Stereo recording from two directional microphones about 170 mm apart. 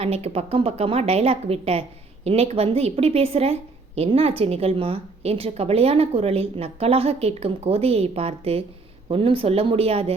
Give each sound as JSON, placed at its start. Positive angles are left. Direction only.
{"t": 0.0, "sound": "a woman's voice", "side_deg": -35}